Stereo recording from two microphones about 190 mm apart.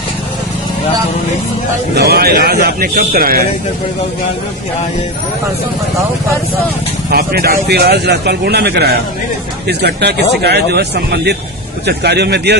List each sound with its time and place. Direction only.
2.0 s speech: 55° right (ahead or behind)
7.1 s speech: 55° right (ahead or behind)